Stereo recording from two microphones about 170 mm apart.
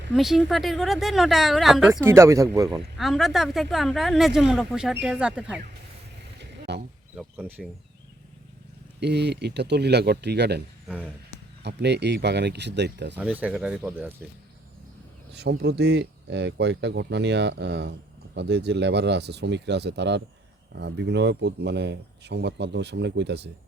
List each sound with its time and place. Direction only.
0.1 s speech: centre (ahead or behind)
1.9 s speech: 15° right (ahead or behind)
3.0 s speech: centre (ahead or behind)
6.4 s a sound: 85° right
7.2 s speech: 5° right (ahead or behind)
9.0 s speech: 80° right
10.8 s speech: 5° right (ahead or behind)
11.6 s speech: 85° right
13.1 s speech: 10° right (ahead or behind)
15.3 s speech: 80° right